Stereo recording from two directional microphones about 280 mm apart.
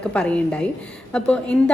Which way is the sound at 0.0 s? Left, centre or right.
Centre.